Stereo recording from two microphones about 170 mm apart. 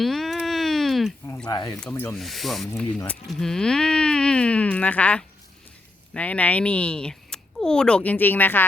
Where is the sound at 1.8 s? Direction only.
10° left (ahead or behind).